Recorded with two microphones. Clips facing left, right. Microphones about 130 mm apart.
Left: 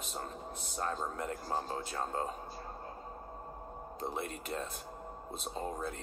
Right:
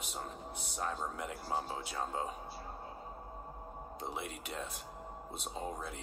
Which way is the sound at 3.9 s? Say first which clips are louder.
Left 4 dB; centre (ahead or behind).